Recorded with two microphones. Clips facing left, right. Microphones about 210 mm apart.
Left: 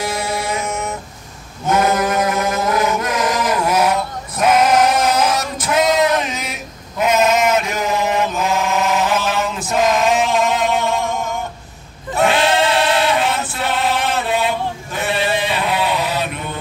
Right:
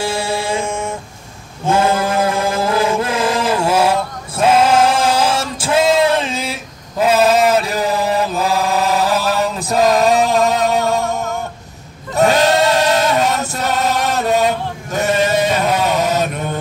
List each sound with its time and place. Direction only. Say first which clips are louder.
0.0 s music: right 2 dB; 30° right (ahead or behind)
1.7 s chant: right 1 dB; 30° right (ahead or behind)
12.2 s choir: right 3 dB; 40° right (ahead or behind)